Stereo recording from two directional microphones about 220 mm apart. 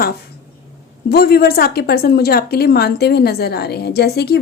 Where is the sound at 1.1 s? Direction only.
45° left (ahead or behind).